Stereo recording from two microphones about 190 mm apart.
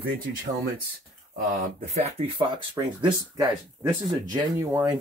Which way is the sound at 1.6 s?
35° right (ahead or behind).